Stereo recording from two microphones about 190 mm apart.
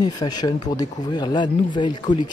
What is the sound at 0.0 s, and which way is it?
Speech, 20° left (ahead or behind).